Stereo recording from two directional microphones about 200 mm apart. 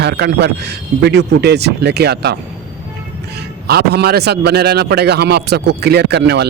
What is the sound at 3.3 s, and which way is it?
Speech, 55° right (ahead or behind).